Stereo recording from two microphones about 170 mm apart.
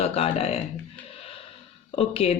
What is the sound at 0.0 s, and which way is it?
Speech, 35° left (ahead or behind).